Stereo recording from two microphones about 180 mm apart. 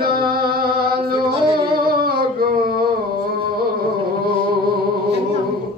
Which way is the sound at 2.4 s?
55° right (ahead or behind).